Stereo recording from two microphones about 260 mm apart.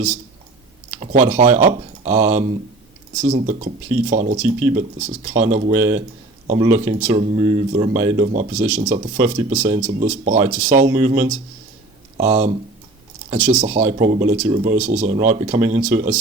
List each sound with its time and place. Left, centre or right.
0.9 s speech: right